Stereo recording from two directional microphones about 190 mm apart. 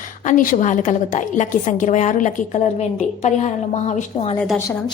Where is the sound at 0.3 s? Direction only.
40° left (ahead or behind).